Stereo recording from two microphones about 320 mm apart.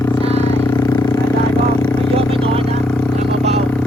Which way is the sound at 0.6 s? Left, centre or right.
Centre.